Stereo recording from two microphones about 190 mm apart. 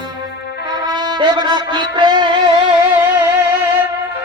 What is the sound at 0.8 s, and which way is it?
Music, 20° right (ahead or behind).